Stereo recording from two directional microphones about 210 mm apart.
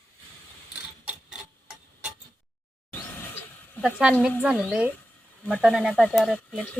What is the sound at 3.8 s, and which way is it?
Speech, 5° right (ahead or behind).